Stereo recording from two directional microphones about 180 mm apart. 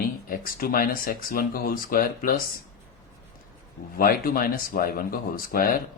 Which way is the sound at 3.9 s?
55° left (ahead or behind).